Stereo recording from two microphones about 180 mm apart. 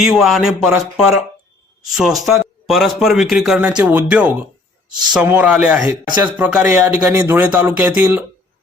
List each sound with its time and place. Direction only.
0.0 s a man's voice: centre (ahead or behind)